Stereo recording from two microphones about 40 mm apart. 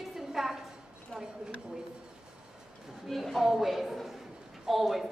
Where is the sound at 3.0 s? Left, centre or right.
Centre.